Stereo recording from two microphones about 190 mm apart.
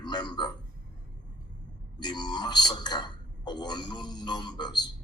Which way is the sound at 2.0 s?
20° left (ahead or behind).